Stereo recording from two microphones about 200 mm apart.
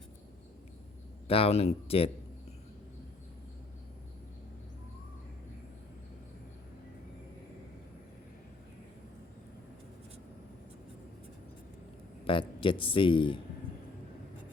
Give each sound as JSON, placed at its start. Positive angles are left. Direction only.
{"t": 1.3, "sound": "speech", "side_deg": 30}
{"t": 12.2, "sound": "speech", "side_deg": 25}